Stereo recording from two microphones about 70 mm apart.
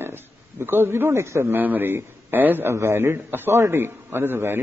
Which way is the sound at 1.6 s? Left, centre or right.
Right.